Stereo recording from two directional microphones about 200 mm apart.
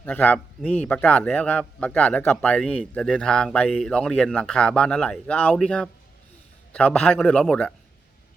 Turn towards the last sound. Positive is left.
turn(degrees=5)  # may be behind; listen again after turning